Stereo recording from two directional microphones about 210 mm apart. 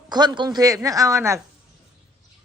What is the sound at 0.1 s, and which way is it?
Speech, 20° right (ahead or behind).